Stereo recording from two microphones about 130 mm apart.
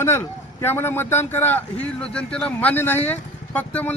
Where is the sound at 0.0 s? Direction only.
15° left (ahead or behind).